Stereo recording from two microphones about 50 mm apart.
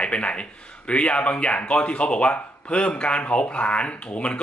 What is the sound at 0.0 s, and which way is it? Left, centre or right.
A man's voice, left.